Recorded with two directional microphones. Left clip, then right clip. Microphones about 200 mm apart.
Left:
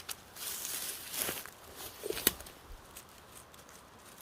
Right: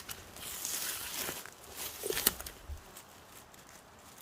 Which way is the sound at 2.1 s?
50° right (ahead or behind).